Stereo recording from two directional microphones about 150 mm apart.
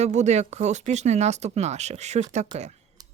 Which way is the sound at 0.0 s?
50° right (ahead or behind).